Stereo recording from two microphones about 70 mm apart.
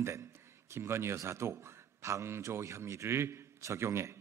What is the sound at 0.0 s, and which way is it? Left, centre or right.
A man's voice, right.